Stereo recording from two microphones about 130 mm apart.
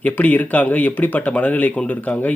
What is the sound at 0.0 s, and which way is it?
Speech, 10° left (ahead or behind).